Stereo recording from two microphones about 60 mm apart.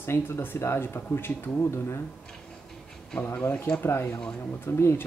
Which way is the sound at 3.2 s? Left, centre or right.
Left.